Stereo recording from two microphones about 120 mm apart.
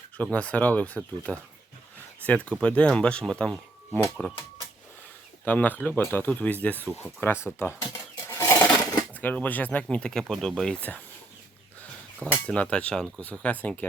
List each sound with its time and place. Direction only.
0.2 s speech: 10° left (ahead or behind)
5.5 s speech: 15° left (ahead or behind)
8.3 s a sound: 20° left (ahead or behind)
9.2 s speech: 15° left (ahead or behind)